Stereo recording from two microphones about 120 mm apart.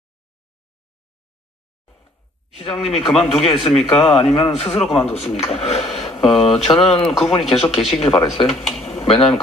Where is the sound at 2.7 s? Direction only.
5° left (ahead or behind).